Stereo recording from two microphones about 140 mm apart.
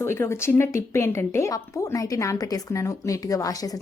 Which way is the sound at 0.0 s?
20° left (ahead or behind).